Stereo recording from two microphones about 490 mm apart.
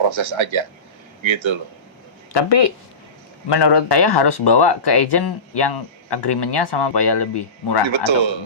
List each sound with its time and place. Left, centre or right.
0.0 s a man's voice: right
2.3 s speech: left
7.9 s a man's voice: right